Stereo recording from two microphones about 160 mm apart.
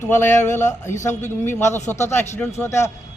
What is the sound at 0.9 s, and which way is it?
A man's voice, 15° left (ahead or behind).